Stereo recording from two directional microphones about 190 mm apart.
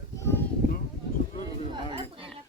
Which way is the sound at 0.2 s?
15° left (ahead or behind).